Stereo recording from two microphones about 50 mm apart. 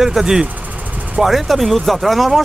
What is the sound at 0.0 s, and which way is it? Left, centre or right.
Speech, centre.